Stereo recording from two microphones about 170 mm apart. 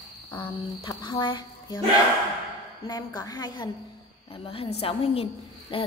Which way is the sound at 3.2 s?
25° left (ahead or behind).